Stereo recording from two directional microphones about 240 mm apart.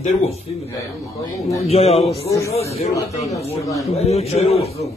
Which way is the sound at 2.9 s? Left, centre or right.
Centre.